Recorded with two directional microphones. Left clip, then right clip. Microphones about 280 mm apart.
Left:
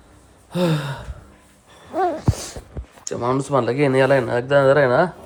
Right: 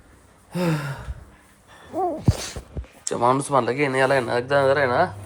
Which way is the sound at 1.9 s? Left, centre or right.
Right.